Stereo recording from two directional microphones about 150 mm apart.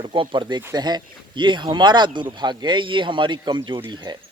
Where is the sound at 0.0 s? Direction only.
35° right (ahead or behind).